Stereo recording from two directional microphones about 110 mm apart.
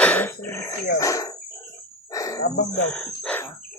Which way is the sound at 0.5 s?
25° left (ahead or behind).